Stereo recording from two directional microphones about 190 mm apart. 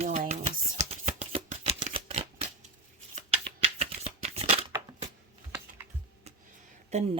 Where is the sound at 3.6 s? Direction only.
35° right (ahead or behind).